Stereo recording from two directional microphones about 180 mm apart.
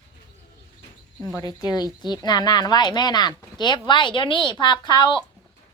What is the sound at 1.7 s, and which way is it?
Speech, 20° left (ahead or behind).